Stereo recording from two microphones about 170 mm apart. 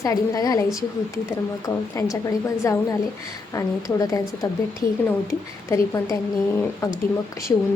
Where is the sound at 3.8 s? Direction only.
20° left (ahead or behind).